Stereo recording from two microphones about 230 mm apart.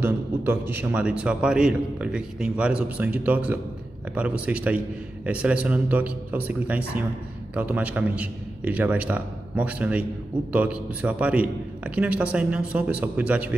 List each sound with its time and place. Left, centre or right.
0.0 s a man's voice: centre